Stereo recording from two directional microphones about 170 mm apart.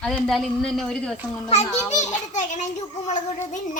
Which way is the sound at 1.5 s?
40° left (ahead or behind).